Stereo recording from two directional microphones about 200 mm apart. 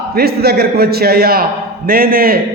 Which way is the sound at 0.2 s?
50° right (ahead or behind).